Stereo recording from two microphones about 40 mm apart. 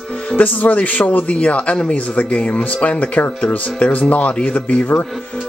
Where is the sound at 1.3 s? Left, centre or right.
Left.